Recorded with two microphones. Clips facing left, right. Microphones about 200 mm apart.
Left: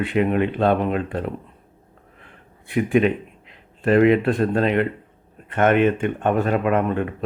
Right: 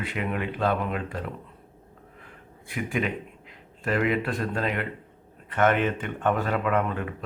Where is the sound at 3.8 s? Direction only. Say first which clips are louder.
Left 10 dB; 25° left (ahead or behind).